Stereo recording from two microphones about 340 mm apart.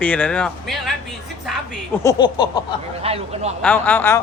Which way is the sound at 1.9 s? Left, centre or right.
Centre.